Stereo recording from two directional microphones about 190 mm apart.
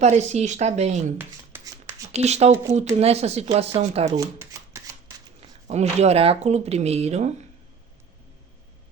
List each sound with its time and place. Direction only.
0.0 s speech: 35° right (ahead or behind)
1.5 s a sound: 20° right (ahead or behind)
2.1 s speech: 35° right (ahead or behind)
4.2 s shuffling cards: 15° right (ahead or behind)
5.4 s speech: 35° right (ahead or behind)